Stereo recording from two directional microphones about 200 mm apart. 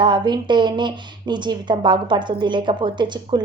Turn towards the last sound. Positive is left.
turn(degrees=-25)  # may be behind; listen again after turning